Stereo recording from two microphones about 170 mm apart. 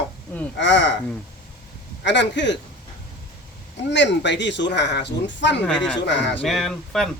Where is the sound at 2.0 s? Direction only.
90° left.